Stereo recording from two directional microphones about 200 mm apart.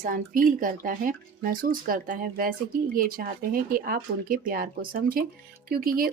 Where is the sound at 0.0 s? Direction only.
40° right (ahead or behind).